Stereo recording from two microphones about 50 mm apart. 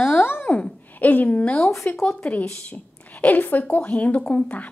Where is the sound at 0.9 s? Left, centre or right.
Left.